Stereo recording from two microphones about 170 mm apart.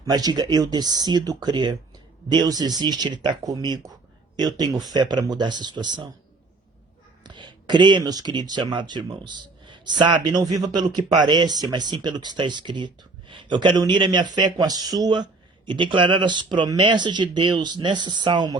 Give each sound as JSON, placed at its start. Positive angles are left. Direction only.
{"t": 0.0, "sound": "speech", "side_deg": -25}
{"t": 7.3, "sound": "speech", "side_deg": -25}